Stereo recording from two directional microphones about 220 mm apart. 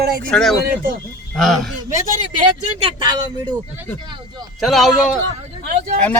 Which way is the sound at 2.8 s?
20° right (ahead or behind).